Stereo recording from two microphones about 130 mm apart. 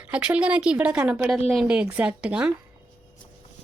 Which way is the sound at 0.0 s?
10° right (ahead or behind).